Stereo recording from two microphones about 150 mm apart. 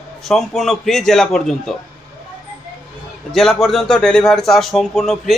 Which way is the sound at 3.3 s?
Centre (ahead or behind).